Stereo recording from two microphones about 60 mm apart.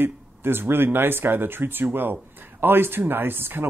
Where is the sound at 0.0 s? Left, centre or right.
Right.